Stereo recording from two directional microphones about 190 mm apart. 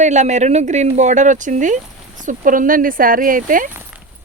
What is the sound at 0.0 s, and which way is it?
Speech, 40° right (ahead or behind).